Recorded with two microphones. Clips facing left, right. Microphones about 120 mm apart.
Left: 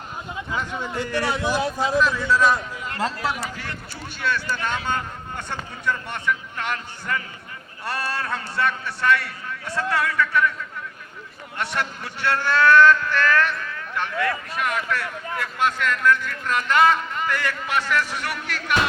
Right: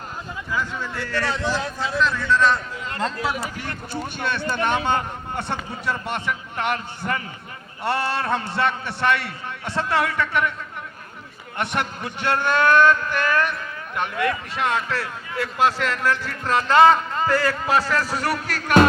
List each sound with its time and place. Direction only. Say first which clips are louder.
0.5 s a man's voice: even; 20° left (ahead or behind)
4.2 s a man's voice: right 1 dB; 25° right (ahead or behind)
11.5 s a man's voice: right 2 dB; 20° right (ahead or behind); by 18.9 s 45° right (ahead or behind)